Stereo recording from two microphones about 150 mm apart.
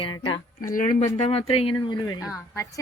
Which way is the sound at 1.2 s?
40° left (ahead or behind).